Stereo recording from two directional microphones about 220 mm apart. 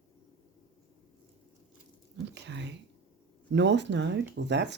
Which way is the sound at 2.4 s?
55° right (ahead or behind).